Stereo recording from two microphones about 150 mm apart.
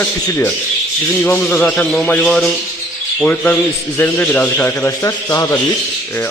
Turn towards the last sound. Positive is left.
turn(degrees=20)  # may be behind; listen again after turning